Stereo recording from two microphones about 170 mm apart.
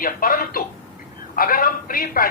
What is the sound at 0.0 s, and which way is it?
A man's voice, 55° left (ahead or behind).